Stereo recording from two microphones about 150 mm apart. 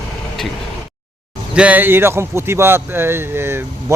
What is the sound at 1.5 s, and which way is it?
Speech, 10° right (ahead or behind).